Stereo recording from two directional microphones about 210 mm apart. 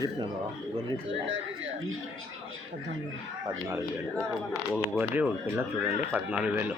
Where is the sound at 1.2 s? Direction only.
65° right (ahead or behind).